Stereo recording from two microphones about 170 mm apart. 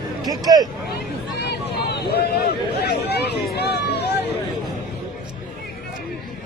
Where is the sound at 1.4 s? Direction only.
75° left (ahead or behind).